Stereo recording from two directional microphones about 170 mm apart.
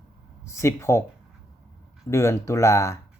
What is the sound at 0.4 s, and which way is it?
Speech, 15° left (ahead or behind).